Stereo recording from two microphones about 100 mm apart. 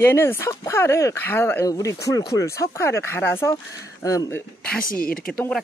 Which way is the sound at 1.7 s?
30° left (ahead or behind).